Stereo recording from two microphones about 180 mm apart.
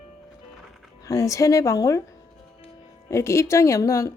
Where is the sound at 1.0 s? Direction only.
20° left (ahead or behind).